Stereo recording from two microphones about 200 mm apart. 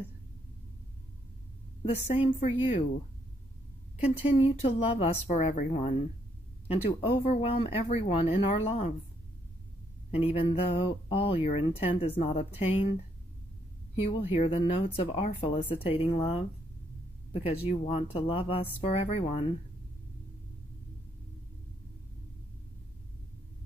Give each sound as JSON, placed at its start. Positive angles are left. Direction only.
{"t": 1.8, "sound": "a woman's voice", "side_deg": 30}
{"t": 4.0, "sound": "speech", "side_deg": 30}
{"t": 10.1, "sound": "speech", "side_deg": 30}
{"t": 13.9, "sound": "speech", "side_deg": 30}